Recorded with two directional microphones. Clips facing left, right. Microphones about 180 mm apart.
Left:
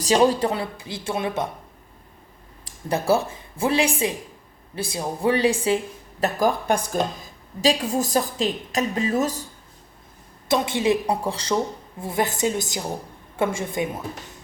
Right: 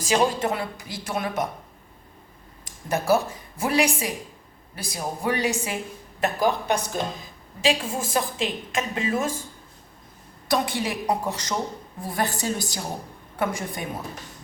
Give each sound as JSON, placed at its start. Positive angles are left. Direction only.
{"t": 0.0, "sound": "speech", "side_deg": 35}
{"t": 2.6, "sound": "a sound", "side_deg": 30}
{"t": 3.6, "sound": "speech", "side_deg": 30}
{"t": 6.1, "sound": "a woman's voice", "side_deg": 40}
{"t": 10.5, "sound": "speech", "side_deg": 20}